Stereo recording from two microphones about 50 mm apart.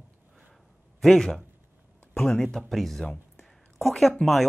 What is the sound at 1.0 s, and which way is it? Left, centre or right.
Speech, centre.